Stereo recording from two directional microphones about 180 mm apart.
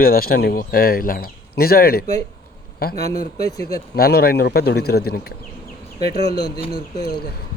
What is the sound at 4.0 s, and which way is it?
Speech, 60° left (ahead or behind).